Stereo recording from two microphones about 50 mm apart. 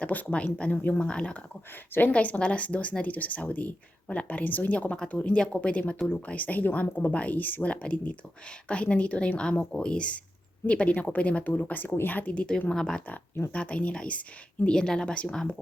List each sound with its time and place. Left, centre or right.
0.0 s a woman's voice: left
0.7 s speech: left
0.9 s a woman's voice: left
1.9 s a woman's voice: left
4.9 s a woman's voice: left
6.8 s a woman's voice: left
7.1 s speech: left
7.7 s a woman's voice: left
12.3 s a woman's voice: left
13.5 s a woman's voice: left